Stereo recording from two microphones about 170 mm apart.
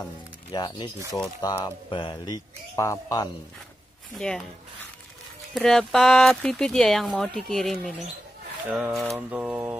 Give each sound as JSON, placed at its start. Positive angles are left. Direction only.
{"t": 0.5, "sound": "a man's voice", "side_deg": 25}
{"t": 1.1, "sound": "speech", "side_deg": 15}
{"t": 1.6, "sound": "a man's voice", "side_deg": 30}
{"t": 4.2, "sound": "speech", "side_deg": 5}
{"t": 5.5, "sound": "speech", "side_deg": 5}